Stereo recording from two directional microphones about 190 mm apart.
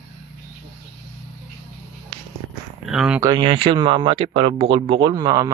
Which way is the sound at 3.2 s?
25° right (ahead or behind).